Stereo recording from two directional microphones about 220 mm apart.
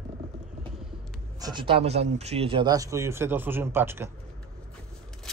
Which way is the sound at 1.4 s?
20° right (ahead or behind).